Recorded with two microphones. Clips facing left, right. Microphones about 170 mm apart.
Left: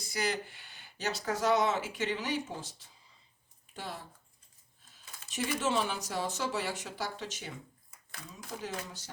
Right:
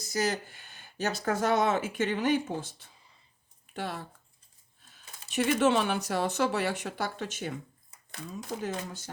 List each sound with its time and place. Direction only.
0.0 s speech: 45° right (ahead or behind); by 4.0 s 65° right (ahead or behind)
4.8 s a sound: 65° right (ahead or behind)
5.3 s speech: 65° right (ahead or behind)